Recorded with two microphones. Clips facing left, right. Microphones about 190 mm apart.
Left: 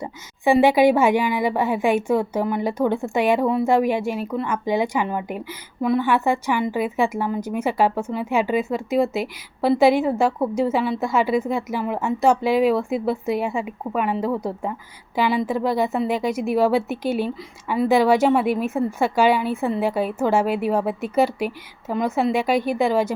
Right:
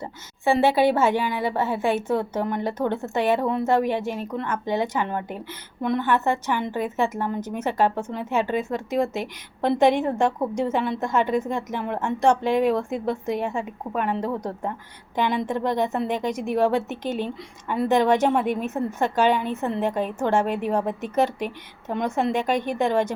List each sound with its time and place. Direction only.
0.0 s a woman's voice: 15° left (ahead or behind)